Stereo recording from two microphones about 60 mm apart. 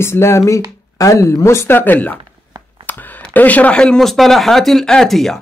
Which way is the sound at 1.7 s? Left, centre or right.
Left.